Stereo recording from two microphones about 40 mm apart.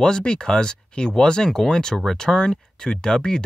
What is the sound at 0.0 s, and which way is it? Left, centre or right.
Speech, centre.